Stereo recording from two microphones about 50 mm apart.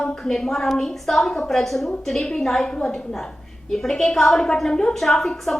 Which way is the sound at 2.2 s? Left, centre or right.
Centre.